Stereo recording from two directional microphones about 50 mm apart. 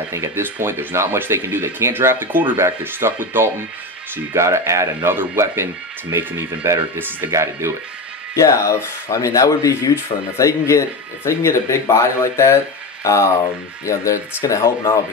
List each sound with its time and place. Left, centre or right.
0.3 s speech: right
4.3 s speech: right
5.0 s speech: right
7.0 s speech: right
7.2 s speech: right
8.4 s speech: left
13.0 s speech: left